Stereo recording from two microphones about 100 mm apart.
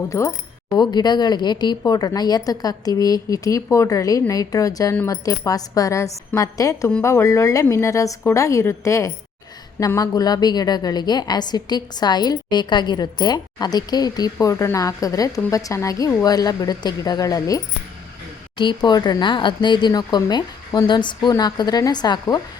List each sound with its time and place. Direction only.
0.1 s a woman's voice: 30° left (ahead or behind)
0.8 s a woman's voice: 45° left (ahead or behind)
18.5 s a woman's voice: 50° left (ahead or behind)